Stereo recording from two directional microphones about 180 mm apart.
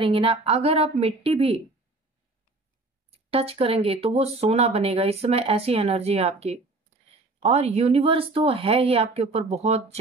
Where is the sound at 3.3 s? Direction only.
35° right (ahead or behind).